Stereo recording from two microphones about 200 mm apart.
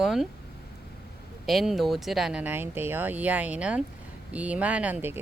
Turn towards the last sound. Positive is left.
turn(degrees=-10)  # may be behind; listen again after turning